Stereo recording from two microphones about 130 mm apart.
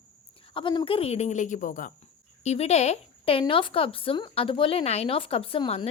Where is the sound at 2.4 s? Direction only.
55° left (ahead or behind).